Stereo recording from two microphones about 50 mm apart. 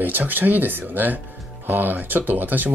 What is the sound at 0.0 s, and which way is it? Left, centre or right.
Speech, right.